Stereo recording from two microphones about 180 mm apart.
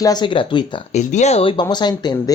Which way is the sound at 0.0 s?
25° left (ahead or behind).